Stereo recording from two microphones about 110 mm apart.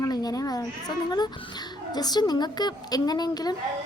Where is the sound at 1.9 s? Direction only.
40° left (ahead or behind).